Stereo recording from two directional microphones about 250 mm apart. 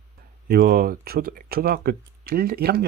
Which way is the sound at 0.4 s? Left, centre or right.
Right.